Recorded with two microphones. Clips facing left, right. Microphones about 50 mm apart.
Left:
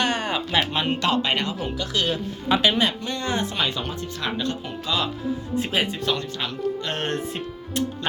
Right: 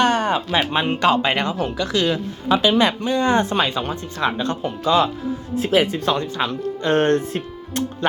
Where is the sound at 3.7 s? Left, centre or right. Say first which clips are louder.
Right 4 dB; right.